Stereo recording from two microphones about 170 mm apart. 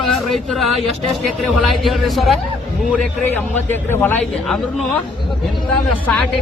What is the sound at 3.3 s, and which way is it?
Speech, 10° left (ahead or behind).